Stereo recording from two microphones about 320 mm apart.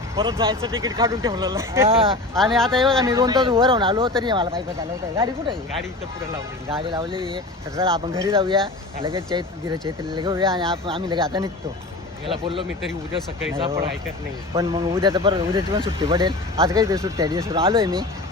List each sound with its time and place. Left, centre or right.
0.2 s speech: centre
2.3 s speech: centre
3.0 s speech: centre
6.7 s speech: centre